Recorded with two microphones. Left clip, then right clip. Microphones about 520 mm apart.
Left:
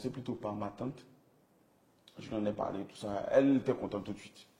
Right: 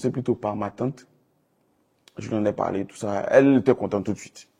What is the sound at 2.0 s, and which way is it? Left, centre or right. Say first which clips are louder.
A man's voice: right 12 dB; right.